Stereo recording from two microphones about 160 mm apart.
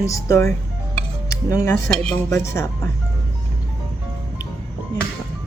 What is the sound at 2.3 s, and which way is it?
Speech, 20° left (ahead or behind).